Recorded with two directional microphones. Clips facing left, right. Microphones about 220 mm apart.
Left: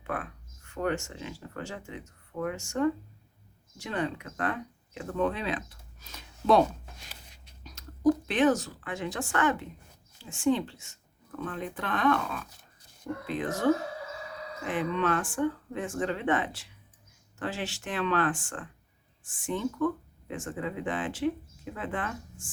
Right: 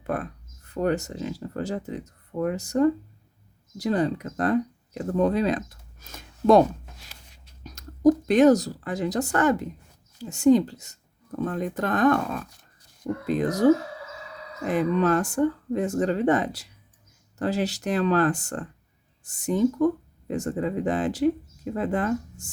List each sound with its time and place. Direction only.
0.0 s speech: 40° right (ahead or behind)
7.6 s speech: 45° right (ahead or behind)